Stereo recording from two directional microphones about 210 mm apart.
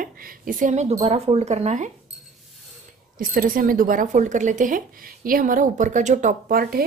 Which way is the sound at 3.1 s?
40° right (ahead or behind).